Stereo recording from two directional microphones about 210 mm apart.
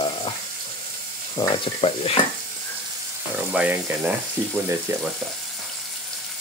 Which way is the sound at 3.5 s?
5° right (ahead or behind).